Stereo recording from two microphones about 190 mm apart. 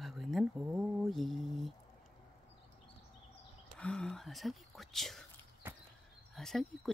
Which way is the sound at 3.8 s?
5° left (ahead or behind).